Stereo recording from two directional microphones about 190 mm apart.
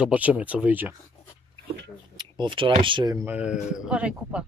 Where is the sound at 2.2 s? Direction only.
25° right (ahead or behind).